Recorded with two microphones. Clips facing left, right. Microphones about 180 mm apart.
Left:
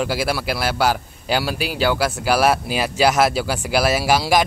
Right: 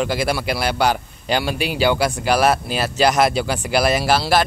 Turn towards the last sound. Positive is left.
turn(degrees=10)  # may be behind; listen again after turning